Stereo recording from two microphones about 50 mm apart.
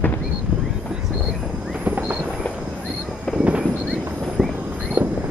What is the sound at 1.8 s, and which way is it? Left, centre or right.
Train, right.